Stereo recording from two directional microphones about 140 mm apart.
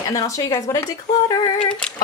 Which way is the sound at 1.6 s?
5° left (ahead or behind).